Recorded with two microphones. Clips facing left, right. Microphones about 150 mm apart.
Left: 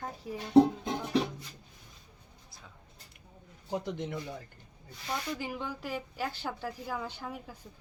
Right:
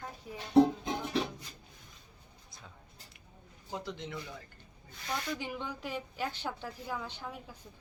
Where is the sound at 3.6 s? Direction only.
55° left (ahead or behind).